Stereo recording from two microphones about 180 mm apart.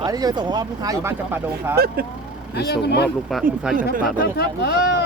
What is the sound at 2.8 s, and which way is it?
Speech, 65° left (ahead or behind).